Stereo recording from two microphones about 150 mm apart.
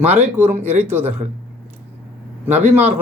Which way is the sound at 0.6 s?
45° right (ahead or behind).